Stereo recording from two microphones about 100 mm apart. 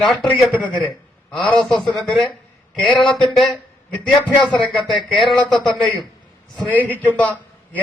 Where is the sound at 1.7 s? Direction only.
Centre (ahead or behind).